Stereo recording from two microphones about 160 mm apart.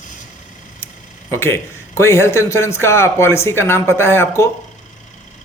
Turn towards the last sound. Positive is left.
turn(degrees=15)  # may be behind; listen again after turning